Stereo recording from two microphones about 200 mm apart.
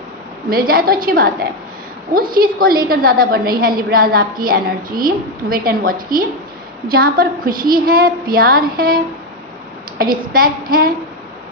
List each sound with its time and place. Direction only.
0.5 s a woman's voice: 45° right (ahead or behind)